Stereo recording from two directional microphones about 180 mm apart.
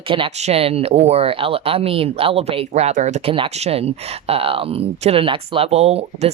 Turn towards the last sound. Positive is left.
turn(degrees=-35)  # may be behind; listen again after turning